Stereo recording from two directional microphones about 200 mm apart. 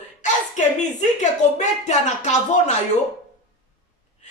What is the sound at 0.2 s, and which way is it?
A woman's voice, 35° left (ahead or behind).